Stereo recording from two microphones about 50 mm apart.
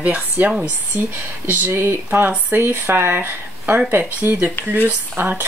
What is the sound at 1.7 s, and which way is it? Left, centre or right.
Speech, right.